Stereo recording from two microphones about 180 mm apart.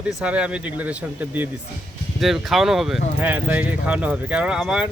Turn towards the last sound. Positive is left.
turn(degrees=-5)  # may be behind; listen again after turning